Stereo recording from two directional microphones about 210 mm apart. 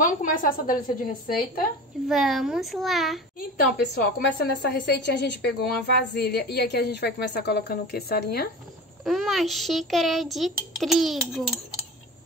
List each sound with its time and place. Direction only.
0.0 s a woman's voice: 40° left (ahead or behind)
2.0 s a child's voice: centre (ahead or behind)
3.3 s a woman's voice: 45° left (ahead or behind)
9.0 s a child's voice: centre (ahead or behind)